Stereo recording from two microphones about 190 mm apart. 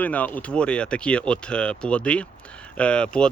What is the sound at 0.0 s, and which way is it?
Speech, 10° left (ahead or behind).